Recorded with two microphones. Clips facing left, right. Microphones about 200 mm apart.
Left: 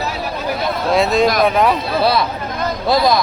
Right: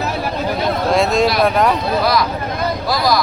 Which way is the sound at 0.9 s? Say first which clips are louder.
Left 2 dB; centre (ahead or behind).